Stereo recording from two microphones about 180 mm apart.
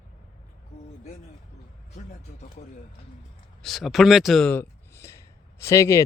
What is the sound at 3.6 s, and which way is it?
Speech, centre (ahead or behind).